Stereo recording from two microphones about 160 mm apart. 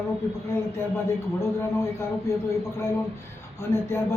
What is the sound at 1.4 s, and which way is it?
Speech, 15° left (ahead or behind).